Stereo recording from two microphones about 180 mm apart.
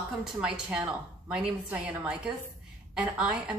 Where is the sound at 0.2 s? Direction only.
5° right (ahead or behind).